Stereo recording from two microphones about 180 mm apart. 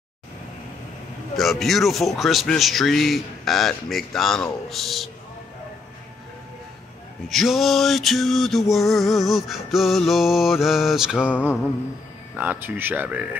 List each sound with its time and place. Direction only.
1.3 s male singing: centre (ahead or behind)
7.2 s male singing: centre (ahead or behind)
11.1 s a sound: 10° left (ahead or behind)
12.4 s speech: 10° right (ahead or behind)